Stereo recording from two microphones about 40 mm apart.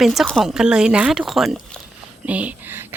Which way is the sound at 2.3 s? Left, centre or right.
Right.